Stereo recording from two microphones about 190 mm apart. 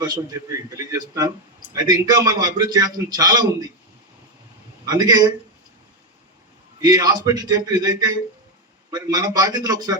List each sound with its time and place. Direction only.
0.9 s a man's voice: 20° right (ahead or behind)
4.9 s a man's voice: 20° right (ahead or behind)
6.8 s a man's voice: 20° right (ahead or behind)